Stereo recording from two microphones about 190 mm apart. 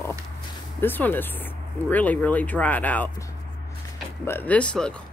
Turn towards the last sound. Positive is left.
turn(degrees=5)  # may be behind; listen again after turning